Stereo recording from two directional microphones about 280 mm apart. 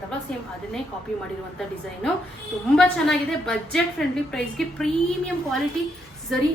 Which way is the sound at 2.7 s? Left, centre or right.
Centre.